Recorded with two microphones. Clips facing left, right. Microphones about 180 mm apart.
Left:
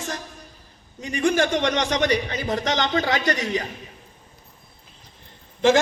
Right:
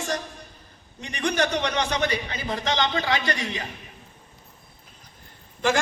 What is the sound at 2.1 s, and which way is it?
A man's voice, 40° left (ahead or behind).